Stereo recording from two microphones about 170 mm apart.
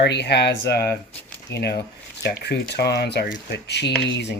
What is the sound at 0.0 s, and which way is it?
Speech, 80° left.